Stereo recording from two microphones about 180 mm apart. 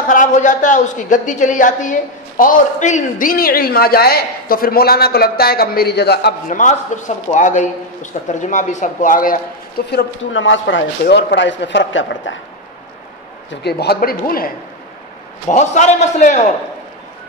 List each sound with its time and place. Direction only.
0.1 s a woman's voice: 45° left (ahead or behind); by 6.3 s 65° left (ahead or behind)
6.5 s a man's voice: 45° left (ahead or behind); by 12.4 s 90° left
13.5 s a man's voice: 65° left (ahead or behind)
15.4 s a man's voice: 40° left (ahead or behind)